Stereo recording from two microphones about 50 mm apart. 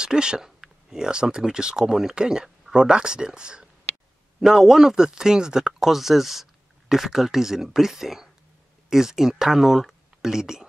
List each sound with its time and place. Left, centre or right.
0.0 s speech: centre